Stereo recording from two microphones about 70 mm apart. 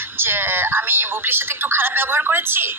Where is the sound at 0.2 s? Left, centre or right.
Right.